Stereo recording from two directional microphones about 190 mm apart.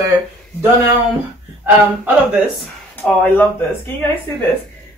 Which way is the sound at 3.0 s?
10° left (ahead or behind).